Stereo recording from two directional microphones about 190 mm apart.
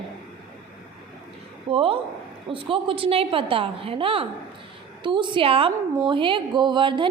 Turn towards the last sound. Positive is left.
turn(degrees=-25)  # may be behind; listen again after turning